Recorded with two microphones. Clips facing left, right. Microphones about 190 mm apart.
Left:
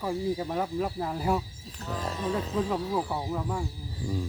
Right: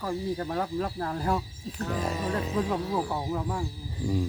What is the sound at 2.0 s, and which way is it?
Speech, 10° right (ahead or behind).